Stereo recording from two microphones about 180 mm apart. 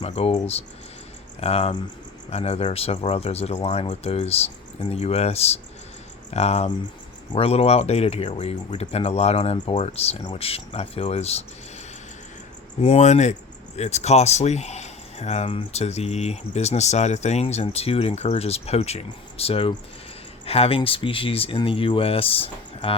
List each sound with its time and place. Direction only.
0.0 s speech: 35° left (ahead or behind)
12.8 s speech: 40° left (ahead or behind)